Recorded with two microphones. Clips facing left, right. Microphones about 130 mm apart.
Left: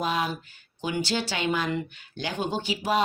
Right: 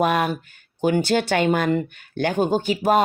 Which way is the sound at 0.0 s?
60° right (ahead or behind).